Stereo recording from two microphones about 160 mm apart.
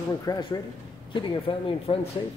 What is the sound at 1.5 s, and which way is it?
Speech, 30° left (ahead or behind).